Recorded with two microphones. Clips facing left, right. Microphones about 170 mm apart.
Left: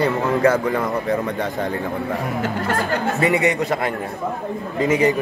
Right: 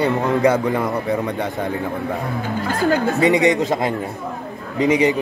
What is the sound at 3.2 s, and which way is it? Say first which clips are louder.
Speech: right 3 dB; 20° right (ahead or behind).